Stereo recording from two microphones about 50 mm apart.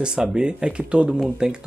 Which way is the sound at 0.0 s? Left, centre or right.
Centre.